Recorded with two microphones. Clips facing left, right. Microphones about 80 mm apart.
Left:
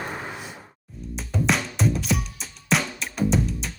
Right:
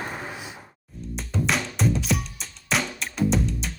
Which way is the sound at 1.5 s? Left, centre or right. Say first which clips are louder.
Left 1 dB; centre.